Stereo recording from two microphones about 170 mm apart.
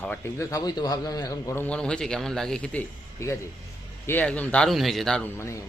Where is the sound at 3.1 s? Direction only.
15° left (ahead or behind).